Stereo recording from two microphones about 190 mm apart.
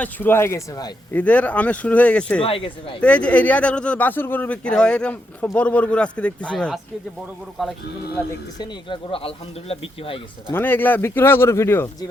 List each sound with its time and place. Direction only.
0.0 s speech: 10° left (ahead or behind)
1.1 s speech: 5° left (ahead or behind)
2.4 s speech: 30° left (ahead or behind)
3.0 s speech: 5° left (ahead or behind)
8.2 s speech: 10° left (ahead or behind)
8.5 s speech: 25° left (ahead or behind)
10.5 s speech: 10° left (ahead or behind)